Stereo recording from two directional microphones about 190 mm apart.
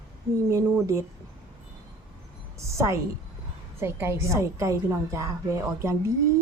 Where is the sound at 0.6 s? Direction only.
10° right (ahead or behind).